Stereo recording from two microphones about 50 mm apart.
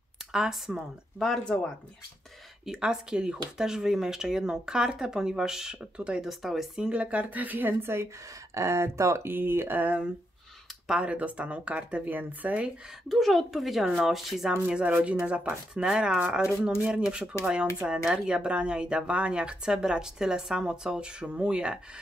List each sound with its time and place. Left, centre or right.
0.3 s speech: centre
2.8 s speech: centre
6.2 s speech: centre
6.8 s speech: right
7.2 s a woman's voice: right
8.5 s speech: right
9.3 s speech: right
11.0 s speech: right
13.1 s speech: centre
14.7 s speech: right